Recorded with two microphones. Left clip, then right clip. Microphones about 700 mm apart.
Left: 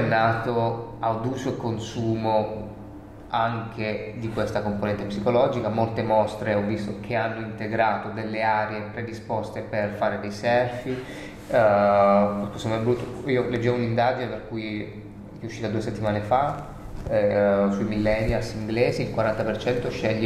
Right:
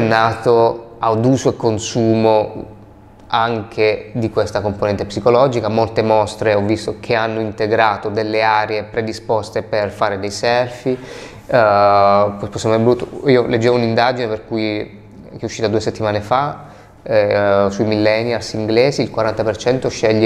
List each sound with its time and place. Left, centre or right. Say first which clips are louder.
0.1 s speech: right 9 dB; right